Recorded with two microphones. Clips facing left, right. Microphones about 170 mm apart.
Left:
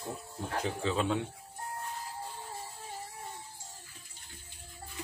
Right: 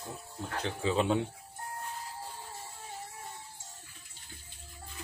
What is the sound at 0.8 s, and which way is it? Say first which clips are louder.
Speech: right 4 dB; 20° right (ahead or behind).